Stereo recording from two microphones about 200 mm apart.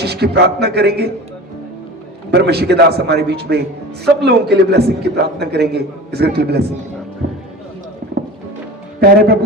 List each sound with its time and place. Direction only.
0.0 s a man's voice: 55° right (ahead or behind)
2.3 s a man's voice: 55° right (ahead or behind)
9.0 s a man's voice: 50° right (ahead or behind)